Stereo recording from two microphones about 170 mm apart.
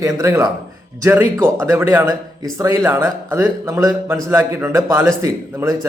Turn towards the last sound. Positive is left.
turn(degrees=-15)  # may be behind; listen again after turning